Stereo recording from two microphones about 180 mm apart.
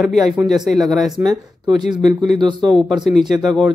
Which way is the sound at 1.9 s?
20° right (ahead or behind).